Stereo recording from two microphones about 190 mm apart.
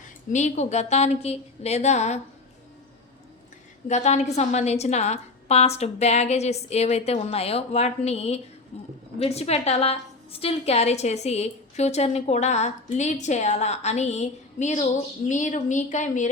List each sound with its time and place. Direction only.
0.3 s a woman's voice: 40° left (ahead or behind)
3.8 s a woman's voice: 35° left (ahead or behind)